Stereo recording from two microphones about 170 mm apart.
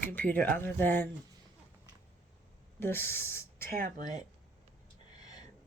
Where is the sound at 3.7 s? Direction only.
55° right (ahead or behind).